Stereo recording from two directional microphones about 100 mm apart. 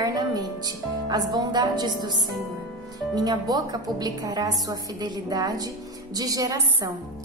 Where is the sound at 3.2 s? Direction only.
40° right (ahead or behind).